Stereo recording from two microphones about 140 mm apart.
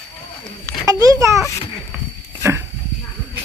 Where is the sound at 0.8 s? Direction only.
25° right (ahead or behind).